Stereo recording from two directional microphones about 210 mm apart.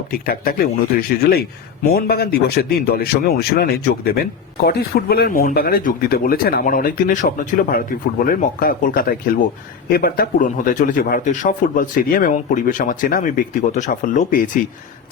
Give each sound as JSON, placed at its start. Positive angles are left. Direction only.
{"t": 0.1, "sound": "speech", "side_deg": 45}